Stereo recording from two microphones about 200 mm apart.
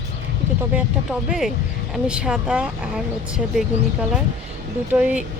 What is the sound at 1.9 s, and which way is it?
Speech, 5° right (ahead or behind).